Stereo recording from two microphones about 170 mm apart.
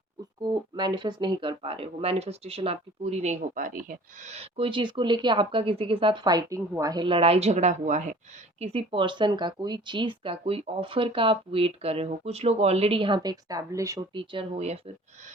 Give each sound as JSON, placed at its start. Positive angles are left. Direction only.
{"t": 0.4, "sound": "speech", "side_deg": -25}
{"t": 4.4, "sound": "speech", "side_deg": -35}
{"t": 8.6, "sound": "speech", "side_deg": -35}
{"t": 14.1, "sound": "speech", "side_deg": -30}